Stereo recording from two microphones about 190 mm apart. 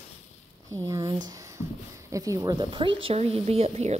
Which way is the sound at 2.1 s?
15° right (ahead or behind).